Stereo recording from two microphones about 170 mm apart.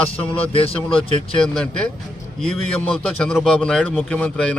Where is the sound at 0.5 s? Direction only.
35° left (ahead or behind).